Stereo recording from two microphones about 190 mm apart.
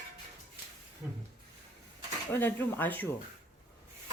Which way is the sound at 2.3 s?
10° left (ahead or behind).